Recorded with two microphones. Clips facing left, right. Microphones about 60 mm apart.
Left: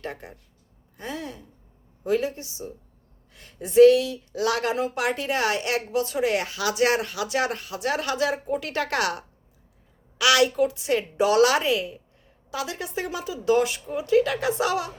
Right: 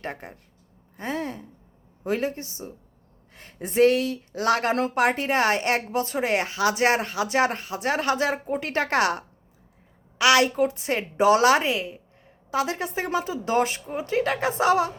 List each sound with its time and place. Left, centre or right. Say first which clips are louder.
0.0 s a woman's voice: right 1 dB; right